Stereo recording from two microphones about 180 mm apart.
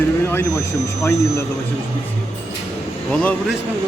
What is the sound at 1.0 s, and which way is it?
Speech, 15° left (ahead or behind).